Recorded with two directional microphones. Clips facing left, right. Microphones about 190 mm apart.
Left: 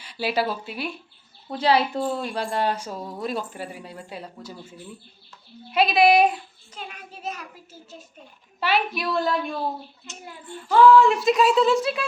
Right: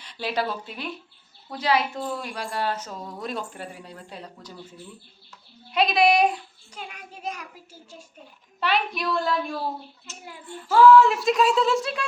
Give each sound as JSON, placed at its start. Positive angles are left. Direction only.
{"t": 0.0, "sound": "speech", "side_deg": 5}
{"t": 1.5, "sound": "speech", "side_deg": 30}
{"t": 5.7, "sound": "a woman's voice", "side_deg": 5}
{"t": 6.7, "sound": "a child's voice", "side_deg": -10}
{"t": 8.6, "sound": "a woman's voice", "side_deg": 5}